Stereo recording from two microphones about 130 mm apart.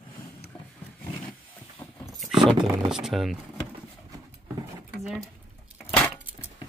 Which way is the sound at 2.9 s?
Centre (ahead or behind).